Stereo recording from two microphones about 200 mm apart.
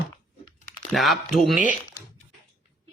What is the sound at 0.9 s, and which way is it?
Speech, centre (ahead or behind).